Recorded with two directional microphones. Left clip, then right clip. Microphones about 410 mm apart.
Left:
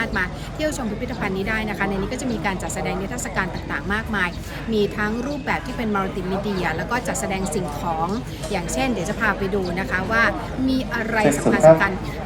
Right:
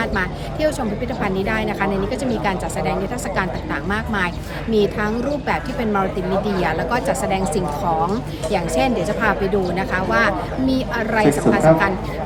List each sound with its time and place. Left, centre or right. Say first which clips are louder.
0.0 s a woman's voice: right 2 dB; centre